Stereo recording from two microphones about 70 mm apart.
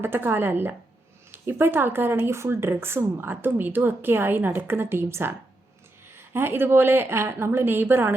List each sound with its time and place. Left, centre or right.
0.0 s speech: right